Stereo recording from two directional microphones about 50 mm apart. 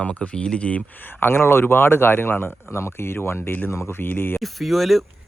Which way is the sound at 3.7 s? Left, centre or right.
Left.